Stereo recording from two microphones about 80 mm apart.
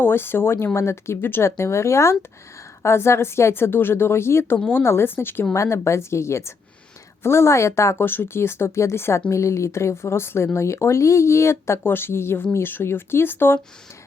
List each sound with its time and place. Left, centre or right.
0.0 s speech: left
5.5 s speech: left